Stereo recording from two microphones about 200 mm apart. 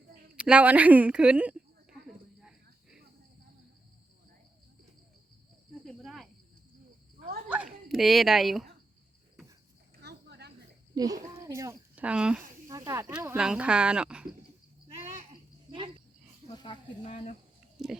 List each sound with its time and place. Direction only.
0.3 s a sound: 5° right (ahead or behind)
5.8 s cricket: centre (ahead or behind)
7.5 s a sound: 5° right (ahead or behind)
10.0 s cricket: 55° right (ahead or behind)
10.9 s speech: 20° right (ahead or behind)
12.7 s speech: 15° right (ahead or behind)
14.8 s cricket: 30° right (ahead or behind)
16.5 s speech: 20° left (ahead or behind)
17.1 s speech: 30° left (ahead or behind)